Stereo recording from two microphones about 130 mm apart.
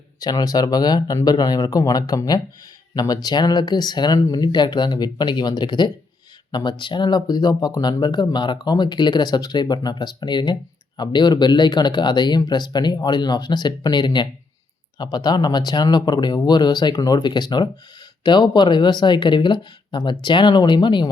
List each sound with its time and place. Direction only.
0.2 s speech: 30° left (ahead or behind)